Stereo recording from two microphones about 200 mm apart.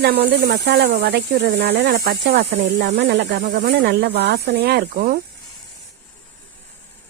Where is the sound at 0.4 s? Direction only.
55° right (ahead or behind).